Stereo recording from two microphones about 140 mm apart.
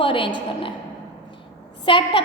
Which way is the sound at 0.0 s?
35° left (ahead or behind).